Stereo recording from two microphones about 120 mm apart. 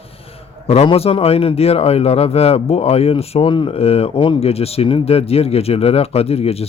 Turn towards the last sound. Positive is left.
turn(degrees=55)  # may be behind; listen again after turning